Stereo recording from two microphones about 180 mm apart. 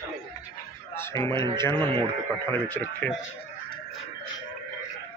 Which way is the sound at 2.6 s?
10° left (ahead or behind).